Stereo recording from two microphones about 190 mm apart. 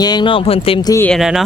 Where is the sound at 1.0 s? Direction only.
Centre (ahead or behind).